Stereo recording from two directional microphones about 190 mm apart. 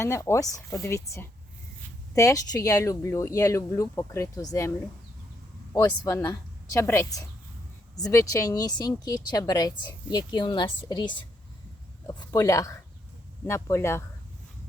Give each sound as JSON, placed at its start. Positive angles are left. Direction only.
{"t": 0.0, "sound": "speech", "side_deg": 15}
{"t": 5.8, "sound": "a woman's voice", "side_deg": 20}